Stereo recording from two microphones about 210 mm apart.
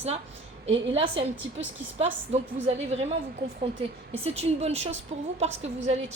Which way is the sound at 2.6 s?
30° right (ahead or behind).